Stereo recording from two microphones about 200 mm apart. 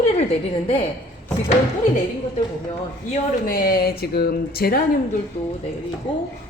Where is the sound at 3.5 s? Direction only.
45° left (ahead or behind).